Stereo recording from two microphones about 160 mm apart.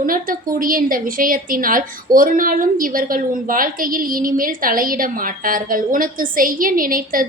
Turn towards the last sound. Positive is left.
turn(degrees=-60)  # may be behind; listen again after turning